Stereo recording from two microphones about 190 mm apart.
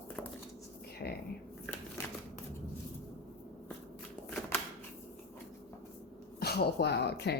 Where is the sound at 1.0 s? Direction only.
45° left (ahead or behind).